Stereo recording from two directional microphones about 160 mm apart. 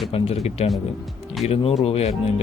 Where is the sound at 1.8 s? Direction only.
40° left (ahead or behind).